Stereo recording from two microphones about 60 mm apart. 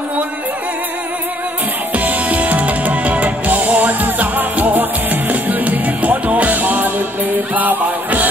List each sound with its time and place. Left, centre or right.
2.0 s music: right